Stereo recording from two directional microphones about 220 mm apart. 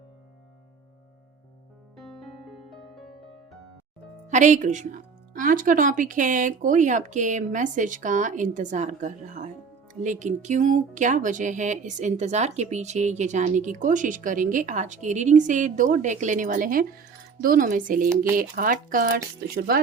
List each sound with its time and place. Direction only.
2.0 s music: centre (ahead or behind)
4.3 s speech: 35° right (ahead or behind)